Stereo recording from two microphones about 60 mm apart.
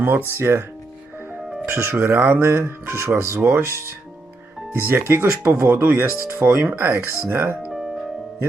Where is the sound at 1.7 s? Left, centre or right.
Right.